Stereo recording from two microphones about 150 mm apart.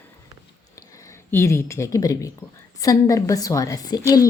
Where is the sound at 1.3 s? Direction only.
15° left (ahead or behind).